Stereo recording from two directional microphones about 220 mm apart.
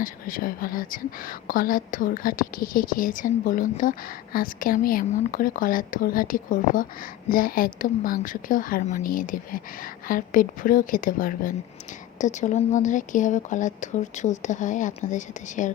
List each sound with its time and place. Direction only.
0.0 s speech: 40° left (ahead or behind)